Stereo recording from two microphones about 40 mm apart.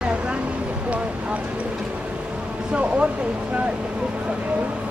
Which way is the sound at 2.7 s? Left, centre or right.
Right.